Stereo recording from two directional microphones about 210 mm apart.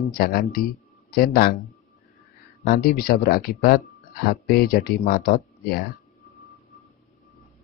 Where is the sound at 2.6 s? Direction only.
45° left (ahead or behind).